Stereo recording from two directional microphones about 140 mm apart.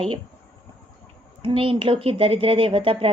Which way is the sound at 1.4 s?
40° right (ahead or behind).